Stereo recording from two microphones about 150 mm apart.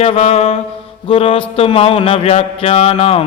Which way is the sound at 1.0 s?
40° left (ahead or behind).